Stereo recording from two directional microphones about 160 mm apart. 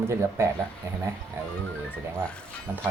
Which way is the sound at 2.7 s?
15° right (ahead or behind).